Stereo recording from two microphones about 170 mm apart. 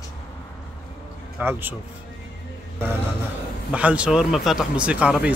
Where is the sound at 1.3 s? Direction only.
10° right (ahead or behind).